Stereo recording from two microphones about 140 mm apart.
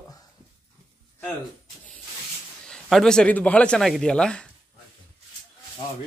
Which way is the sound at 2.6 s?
5° left (ahead or behind).